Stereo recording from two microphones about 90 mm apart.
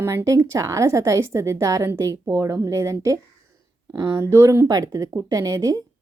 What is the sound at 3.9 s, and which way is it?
Speech, 50° right (ahead or behind).